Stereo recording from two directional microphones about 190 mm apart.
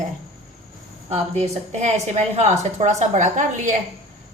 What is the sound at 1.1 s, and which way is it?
A woman's voice, 35° right (ahead or behind).